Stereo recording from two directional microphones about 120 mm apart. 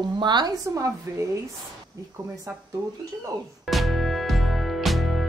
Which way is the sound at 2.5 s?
20° right (ahead or behind).